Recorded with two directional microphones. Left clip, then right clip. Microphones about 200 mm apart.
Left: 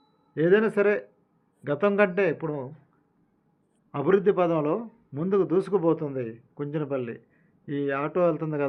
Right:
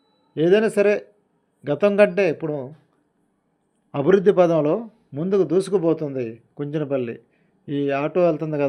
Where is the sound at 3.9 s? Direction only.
30° right (ahead or behind).